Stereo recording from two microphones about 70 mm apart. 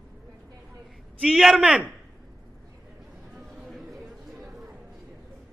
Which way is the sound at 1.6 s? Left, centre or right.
Centre.